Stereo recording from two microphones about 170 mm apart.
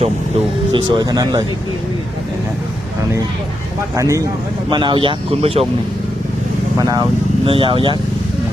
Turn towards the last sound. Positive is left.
turn(degrees=-30)  # may be behind; listen again after turning